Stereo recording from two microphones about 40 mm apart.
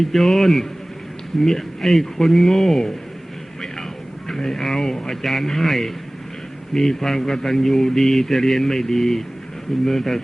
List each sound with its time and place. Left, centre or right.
0.0 s a man's voice: centre
4.3 s a man's voice: centre